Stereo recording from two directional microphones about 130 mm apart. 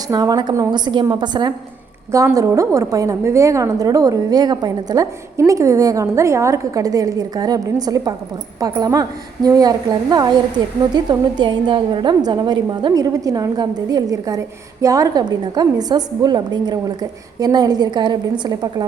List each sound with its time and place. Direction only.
0.1 s a woman's voice: 30° right (ahead or behind)
2.1 s a woman's voice: 25° right (ahead or behind)